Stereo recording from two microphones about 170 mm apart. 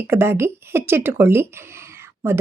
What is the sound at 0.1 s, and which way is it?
A woman's voice, 15° right (ahead or behind).